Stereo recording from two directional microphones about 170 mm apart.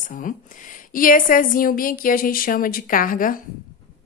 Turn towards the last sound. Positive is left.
turn(degrees=55)  # may be behind; listen again after turning